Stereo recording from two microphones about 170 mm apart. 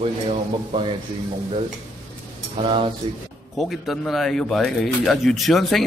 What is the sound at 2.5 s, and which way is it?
Speech, 35° right (ahead or behind).